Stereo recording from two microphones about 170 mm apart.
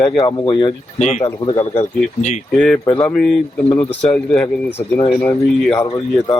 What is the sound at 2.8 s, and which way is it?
Speech, 15° left (ahead or behind).